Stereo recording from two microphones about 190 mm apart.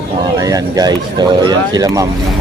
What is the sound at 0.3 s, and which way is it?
Speech, 20° right (ahead or behind).